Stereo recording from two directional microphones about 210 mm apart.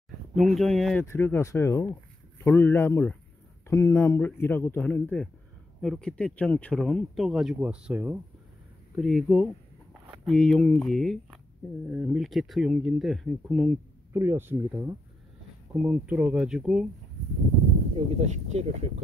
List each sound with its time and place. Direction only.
0.4 s speech: centre (ahead or behind)
14.1 s speech: 10° right (ahead or behind)
17.9 s speech: 30° right (ahead or behind)